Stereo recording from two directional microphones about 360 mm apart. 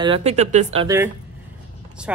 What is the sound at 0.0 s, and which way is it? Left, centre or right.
Speech, centre.